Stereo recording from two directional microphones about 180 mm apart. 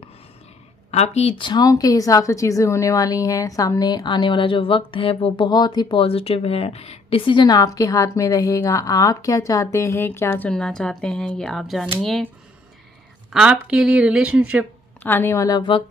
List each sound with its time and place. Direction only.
0.9 s a woman's voice: 35° left (ahead or behind); by 12.3 s centre (ahead or behind)
13.3 s a woman's voice: 5° right (ahead or behind)
15.0 s a woman's voice: 10° left (ahead or behind)